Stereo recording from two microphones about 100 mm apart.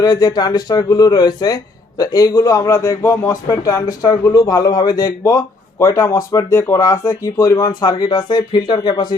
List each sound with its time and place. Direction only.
0.0 s speech: 40° left (ahead or behind)
7.8 s speech: 40° left (ahead or behind)